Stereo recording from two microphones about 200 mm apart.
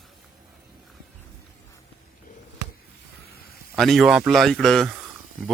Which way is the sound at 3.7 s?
Centre (ahead or behind).